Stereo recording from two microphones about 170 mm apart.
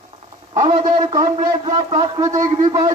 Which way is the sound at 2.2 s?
20° right (ahead or behind).